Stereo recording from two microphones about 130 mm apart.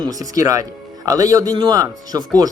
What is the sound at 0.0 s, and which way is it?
Speech, 25° right (ahead or behind).